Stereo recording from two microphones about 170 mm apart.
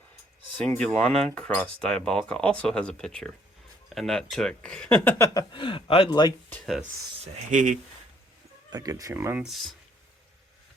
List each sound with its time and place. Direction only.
0.8 s speech: 5° left (ahead or behind); by 6.3 s 25° left (ahead or behind)
7.5 s speech: 50° right (ahead or behind)
8.7 s speech: 20° right (ahead or behind); by 9.7 s centre (ahead or behind)